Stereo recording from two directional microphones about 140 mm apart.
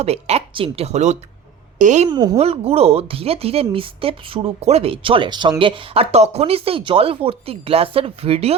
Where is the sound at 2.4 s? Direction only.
45° right (ahead or behind).